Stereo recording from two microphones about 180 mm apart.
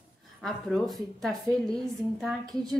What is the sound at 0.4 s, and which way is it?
A woman's voice, 5° left (ahead or behind).